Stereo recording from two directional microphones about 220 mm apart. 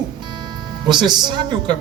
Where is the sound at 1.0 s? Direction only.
20° right (ahead or behind).